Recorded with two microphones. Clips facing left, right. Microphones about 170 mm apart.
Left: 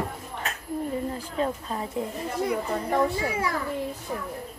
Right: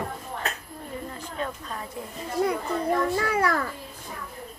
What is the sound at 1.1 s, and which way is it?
Speech, 30° left (ahead or behind).